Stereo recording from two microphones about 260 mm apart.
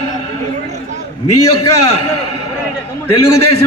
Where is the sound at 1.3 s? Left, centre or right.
Left.